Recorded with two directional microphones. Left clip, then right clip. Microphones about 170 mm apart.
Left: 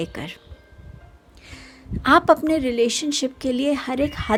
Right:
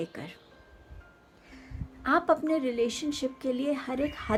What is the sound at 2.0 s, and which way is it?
A woman's voice, 60° left (ahead or behind).